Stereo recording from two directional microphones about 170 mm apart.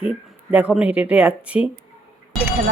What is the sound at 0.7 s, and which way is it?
Speech, 10° right (ahead or behind).